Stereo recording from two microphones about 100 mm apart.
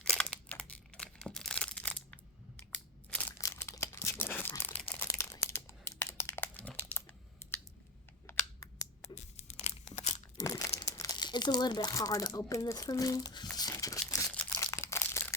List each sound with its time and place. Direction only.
0.0 s a sound: 10° left (ahead or behind)
2.7 s crushing: 15° left (ahead or behind)
3.3 s crumpling: 30° left (ahead or behind)
5.0 s crumpling: 30° left (ahead or behind)
8.3 s computer keyboard: 30° left (ahead or behind)
9.5 s tearing: 90° left
10.3 s crumpling: 35° left (ahead or behind)
11.9 s speech: 30° left (ahead or behind)
13.7 s crumpling: 35° left (ahead or behind)